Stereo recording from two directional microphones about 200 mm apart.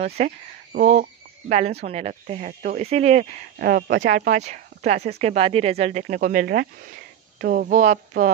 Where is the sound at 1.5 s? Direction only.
30° right (ahead or behind).